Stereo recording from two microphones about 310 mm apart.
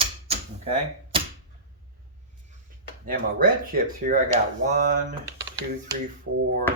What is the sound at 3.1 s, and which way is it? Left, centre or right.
Speech, right.